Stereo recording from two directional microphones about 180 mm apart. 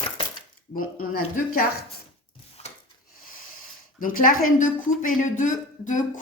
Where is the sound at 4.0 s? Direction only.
50° left (ahead or behind).